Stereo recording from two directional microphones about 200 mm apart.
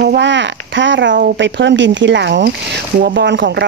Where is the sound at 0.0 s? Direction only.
60° right (ahead or behind).